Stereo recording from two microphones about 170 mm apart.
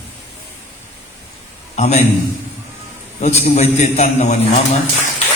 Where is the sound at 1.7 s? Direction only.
40° left (ahead or behind).